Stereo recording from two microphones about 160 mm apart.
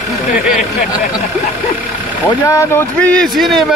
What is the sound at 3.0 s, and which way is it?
Speech, 5° left (ahead or behind).